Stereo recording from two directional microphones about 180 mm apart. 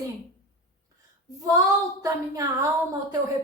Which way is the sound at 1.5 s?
20° right (ahead or behind).